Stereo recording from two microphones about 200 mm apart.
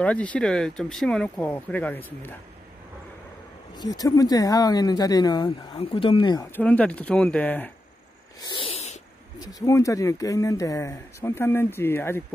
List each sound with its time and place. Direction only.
0.0 s speech: 5° left (ahead or behind)
3.7 s speech: 20° left (ahead or behind)
6.6 s speech: 5° left (ahead or behind)
8.4 s sneeze: 25° left (ahead or behind)
9.4 s speech: 20° left (ahead or behind)